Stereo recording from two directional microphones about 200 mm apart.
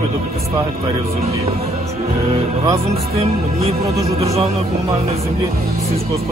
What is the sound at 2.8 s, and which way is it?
Music, 30° right (ahead or behind).